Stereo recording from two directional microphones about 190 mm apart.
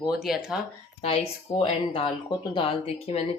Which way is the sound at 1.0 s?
30° left (ahead or behind).